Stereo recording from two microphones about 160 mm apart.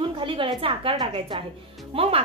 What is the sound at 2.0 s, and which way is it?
Speech, 35° right (ahead or behind).